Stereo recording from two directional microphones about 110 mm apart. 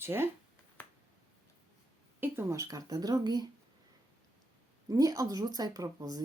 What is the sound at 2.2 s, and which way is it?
Speech, 25° right (ahead or behind).